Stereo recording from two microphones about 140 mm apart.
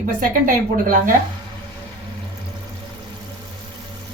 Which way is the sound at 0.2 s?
80° right.